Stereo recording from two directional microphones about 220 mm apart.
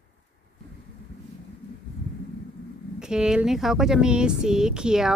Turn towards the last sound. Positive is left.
turn(degrees=-5)  # may be behind; listen again after turning